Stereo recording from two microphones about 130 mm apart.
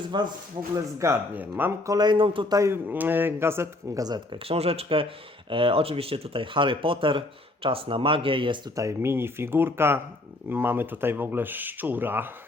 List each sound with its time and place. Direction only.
0.1 s speech: 35° right (ahead or behind)
0.9 s speech: 20° right (ahead or behind)
1.9 s speech: 35° right (ahead or behind)
2.5 s speech: 20° right (ahead or behind)
4.4 s speech: 50° right (ahead or behind)
8.7 s speech: 25° right (ahead or behind)